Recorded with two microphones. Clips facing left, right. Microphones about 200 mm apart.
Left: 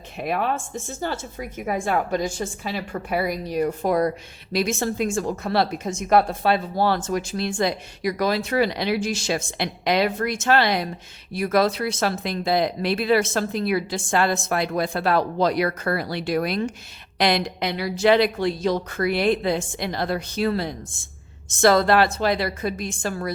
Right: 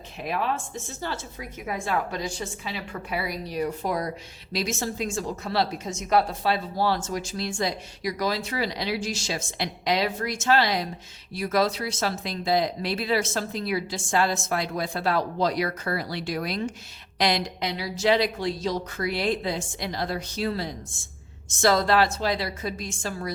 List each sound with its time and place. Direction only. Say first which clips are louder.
0.2 s a woman's voice: left 4 dB; 55° left (ahead or behind)